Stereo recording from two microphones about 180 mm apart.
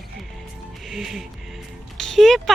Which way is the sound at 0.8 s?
Centre (ahead or behind).